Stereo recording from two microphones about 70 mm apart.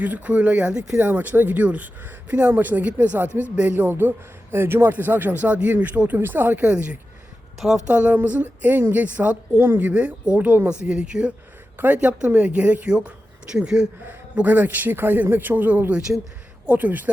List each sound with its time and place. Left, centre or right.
0.0 s speech: right
0.9 s speech: right
6.7 s speech: centre
9.9 s speech: centre
14.3 s speech: right
16.0 s speech: centre
16.6 s speech: right